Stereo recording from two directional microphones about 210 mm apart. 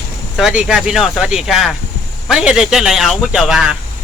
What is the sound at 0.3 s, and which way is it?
Speech, centre (ahead or behind).